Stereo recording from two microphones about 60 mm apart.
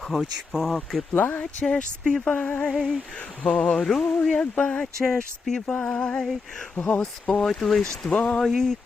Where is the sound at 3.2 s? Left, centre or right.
Centre.